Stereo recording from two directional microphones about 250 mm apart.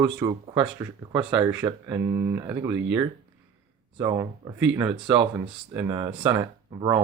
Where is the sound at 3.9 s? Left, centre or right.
Centre.